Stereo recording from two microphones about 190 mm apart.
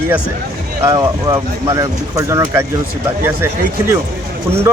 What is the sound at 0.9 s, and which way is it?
Speech, 15° right (ahead or behind).